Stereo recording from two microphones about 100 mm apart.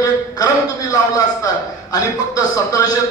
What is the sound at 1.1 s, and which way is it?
A man's voice, 40° left (ahead or behind).